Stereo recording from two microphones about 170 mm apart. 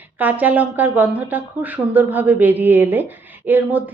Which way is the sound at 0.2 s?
10° right (ahead or behind).